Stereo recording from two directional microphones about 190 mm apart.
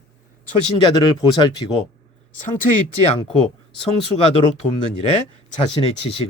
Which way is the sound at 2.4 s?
40° left (ahead or behind).